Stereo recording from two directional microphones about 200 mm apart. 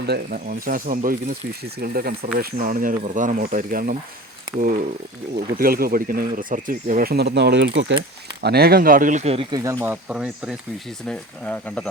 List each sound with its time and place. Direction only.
0.0 s speech: 50° right (ahead or behind)
5.5 s speech: 50° right (ahead or behind); by 7.9 s 65° right (ahead or behind)
8.4 s speech: 50° right (ahead or behind); by 9.6 s 30° right (ahead or behind)
9.6 s speech: 15° right (ahead or behind); by 11.9 s 5° left (ahead or behind)